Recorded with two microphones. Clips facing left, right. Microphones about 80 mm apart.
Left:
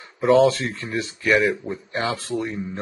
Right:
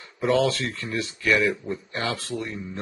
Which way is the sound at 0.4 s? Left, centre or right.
Left.